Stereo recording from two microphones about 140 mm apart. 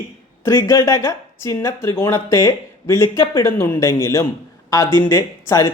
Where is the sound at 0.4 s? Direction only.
25° left (ahead or behind).